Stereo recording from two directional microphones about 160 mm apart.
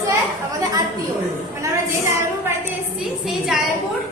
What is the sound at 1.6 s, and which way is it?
Speech, 15° right (ahead or behind).